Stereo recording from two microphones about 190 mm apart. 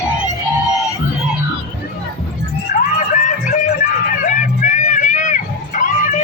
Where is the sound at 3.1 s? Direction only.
40° left (ahead or behind).